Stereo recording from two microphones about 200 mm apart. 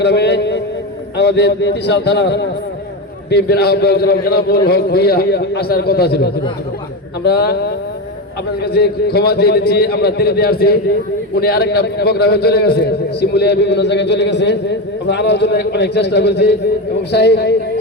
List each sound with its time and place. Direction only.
0.0 s a man's voice: 60° left (ahead or behind)